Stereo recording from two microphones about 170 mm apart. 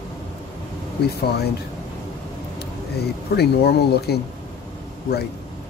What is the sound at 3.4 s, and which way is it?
Speech, 70° left (ahead or behind).